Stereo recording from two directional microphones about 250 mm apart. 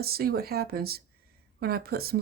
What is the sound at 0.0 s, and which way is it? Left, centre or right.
Speech, right.